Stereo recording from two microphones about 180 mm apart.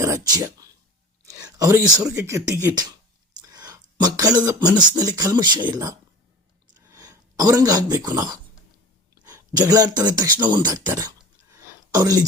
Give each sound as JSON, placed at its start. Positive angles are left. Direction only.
{"t": 0.0, "sound": "speech", "side_deg": -20}
{"t": 3.5, "sound": "a sound", "side_deg": -20}
{"t": 5.7, "sound": "speech", "side_deg": -20}